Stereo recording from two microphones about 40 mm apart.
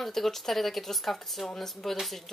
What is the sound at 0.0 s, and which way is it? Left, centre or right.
A woman's voice, centre.